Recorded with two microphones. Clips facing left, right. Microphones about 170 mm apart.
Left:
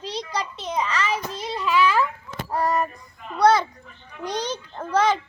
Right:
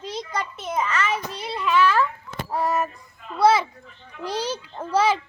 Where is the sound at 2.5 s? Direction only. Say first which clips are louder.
Left 1 dB; centre (ahead or behind).